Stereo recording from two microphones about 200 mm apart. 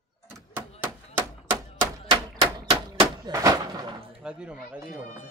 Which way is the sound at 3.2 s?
20° right (ahead or behind).